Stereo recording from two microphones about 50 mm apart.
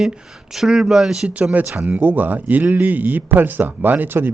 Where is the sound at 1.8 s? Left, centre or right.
Right.